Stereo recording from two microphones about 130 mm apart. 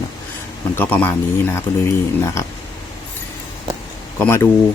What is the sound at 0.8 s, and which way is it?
Speech, 15° left (ahead or behind).